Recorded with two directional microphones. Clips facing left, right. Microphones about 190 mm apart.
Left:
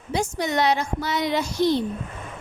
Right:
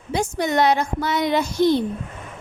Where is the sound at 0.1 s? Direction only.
55° right (ahead or behind).